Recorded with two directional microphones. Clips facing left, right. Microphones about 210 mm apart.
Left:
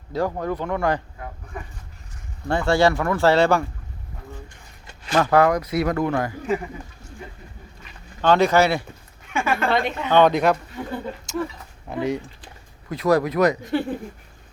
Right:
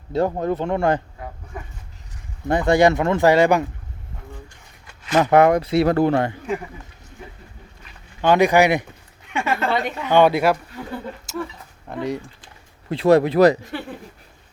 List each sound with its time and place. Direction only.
0.1 s speech: 25° right (ahead or behind)
2.5 s speech: 20° right (ahead or behind)
5.1 s speech: 20° right (ahead or behind)
8.2 s speech: 15° right (ahead or behind)
9.6 s speech: 5° right (ahead or behind)
12.9 s speech: 25° right (ahead or behind)